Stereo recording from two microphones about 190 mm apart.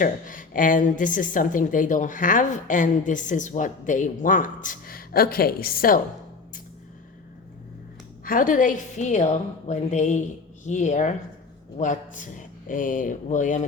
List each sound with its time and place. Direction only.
0.0 s a woman's voice: 45° left (ahead or behind)
8.2 s a woman's voice: 45° left (ahead or behind)